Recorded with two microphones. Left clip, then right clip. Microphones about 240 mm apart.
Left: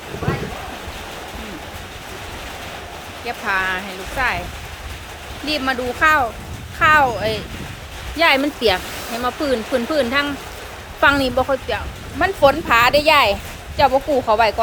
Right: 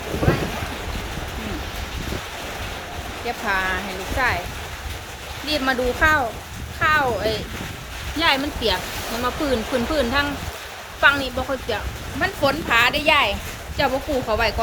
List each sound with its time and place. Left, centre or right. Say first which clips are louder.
3.2 s speech: left 2 dB; centre
5.5 s speech: even; centre
11.0 s a woman's voice: left 3 dB; centre
13.7 s speech: left 6 dB; centre